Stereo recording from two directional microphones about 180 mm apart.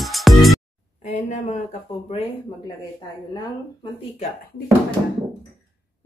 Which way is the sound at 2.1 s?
30° left (ahead or behind).